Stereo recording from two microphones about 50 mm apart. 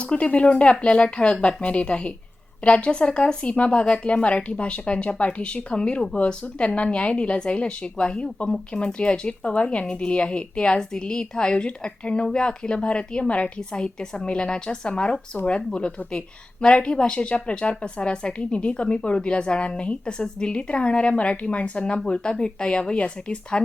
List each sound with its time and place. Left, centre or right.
0.0 s a woman's voice: left